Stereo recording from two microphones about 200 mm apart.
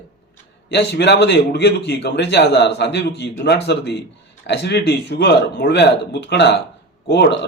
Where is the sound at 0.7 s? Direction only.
55° left (ahead or behind).